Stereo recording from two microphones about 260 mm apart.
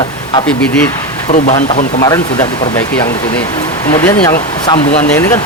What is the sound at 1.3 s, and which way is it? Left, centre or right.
Speech, left.